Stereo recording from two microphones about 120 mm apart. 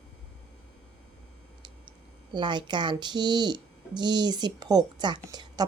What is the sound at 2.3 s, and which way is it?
Speech, 40° right (ahead or behind).